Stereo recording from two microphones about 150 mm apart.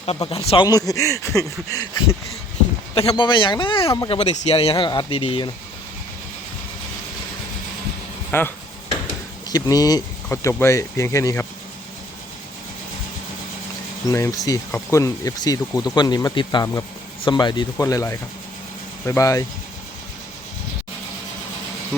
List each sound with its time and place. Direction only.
0.0 s speech: 40° left (ahead or behind); by 1.9 s 20° left (ahead or behind)
2.9 s speech: 40° left (ahead or behind)
8.3 s a sound: 15° left (ahead or behind)
9.0 s speech: 25° left (ahead or behind)
14.1 s speech: 20° left (ahead or behind)